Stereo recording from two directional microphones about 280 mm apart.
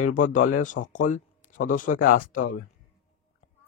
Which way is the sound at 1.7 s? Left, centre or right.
Left.